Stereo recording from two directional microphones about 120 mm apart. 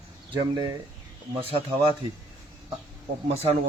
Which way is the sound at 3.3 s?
60° right (ahead or behind).